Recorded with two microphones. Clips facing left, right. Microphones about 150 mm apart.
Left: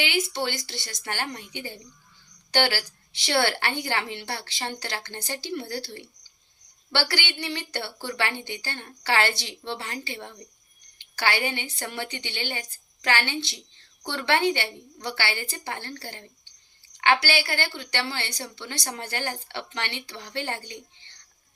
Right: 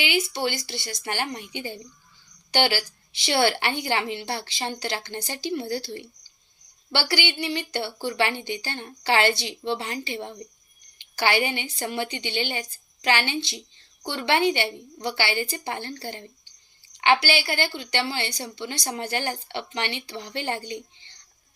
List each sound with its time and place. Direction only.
0.0 s a woman's voice: 10° right (ahead or behind)